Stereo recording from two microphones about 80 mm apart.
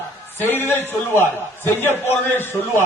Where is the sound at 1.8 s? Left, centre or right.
Left.